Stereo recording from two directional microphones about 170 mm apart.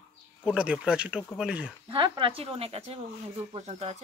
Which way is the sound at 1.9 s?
30° right (ahead or behind).